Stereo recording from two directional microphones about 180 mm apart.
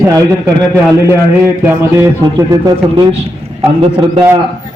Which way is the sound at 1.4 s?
15° right (ahead or behind).